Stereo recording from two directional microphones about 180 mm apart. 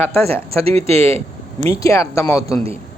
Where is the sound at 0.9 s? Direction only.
35° right (ahead or behind).